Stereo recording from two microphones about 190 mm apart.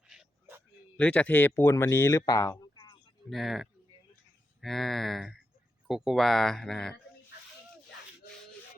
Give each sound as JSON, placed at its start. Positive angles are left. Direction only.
{"t": 0.1, "sound": "a sound", "side_deg": -5}
{"t": 0.9, "sound": "speech", "side_deg": 5}
{"t": 3.2, "sound": "speech", "side_deg": 0}